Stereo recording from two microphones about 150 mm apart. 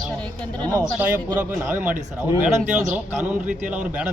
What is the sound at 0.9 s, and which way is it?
A man's voice, 15° right (ahead or behind).